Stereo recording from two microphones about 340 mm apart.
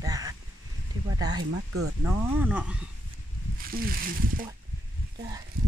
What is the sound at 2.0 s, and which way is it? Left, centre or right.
Speech, centre.